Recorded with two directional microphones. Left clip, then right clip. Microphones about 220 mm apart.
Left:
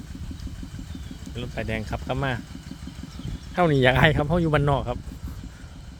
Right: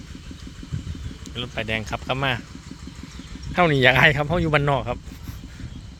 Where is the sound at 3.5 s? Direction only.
10° left (ahead or behind).